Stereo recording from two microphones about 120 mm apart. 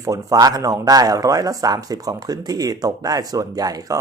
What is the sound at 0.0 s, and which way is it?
Speech, 30° right (ahead or behind).